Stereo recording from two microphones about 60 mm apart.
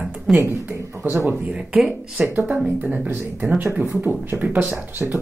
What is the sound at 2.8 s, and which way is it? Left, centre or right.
Speech, right.